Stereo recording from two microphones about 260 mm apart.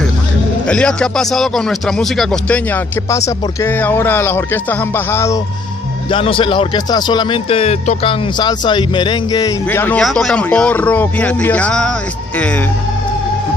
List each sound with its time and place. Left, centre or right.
0.7 s speech: centre